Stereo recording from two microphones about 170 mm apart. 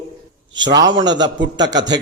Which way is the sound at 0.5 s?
25° right (ahead or behind).